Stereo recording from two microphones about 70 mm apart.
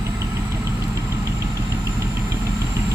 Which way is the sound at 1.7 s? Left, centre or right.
Right.